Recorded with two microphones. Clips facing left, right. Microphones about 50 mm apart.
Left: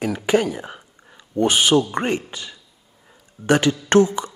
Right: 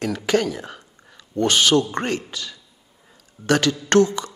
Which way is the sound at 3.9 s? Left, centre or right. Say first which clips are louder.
Left 1 dB; centre.